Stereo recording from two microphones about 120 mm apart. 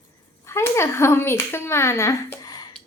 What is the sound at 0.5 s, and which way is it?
A child's voice, 20° left (ahead or behind).